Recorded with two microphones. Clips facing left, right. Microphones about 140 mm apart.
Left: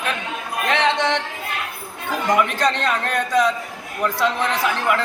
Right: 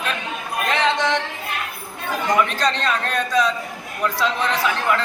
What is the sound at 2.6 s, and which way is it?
Speech, 55° left (ahead or behind).